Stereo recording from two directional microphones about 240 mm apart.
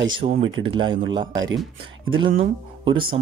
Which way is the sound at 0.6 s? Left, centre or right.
Right.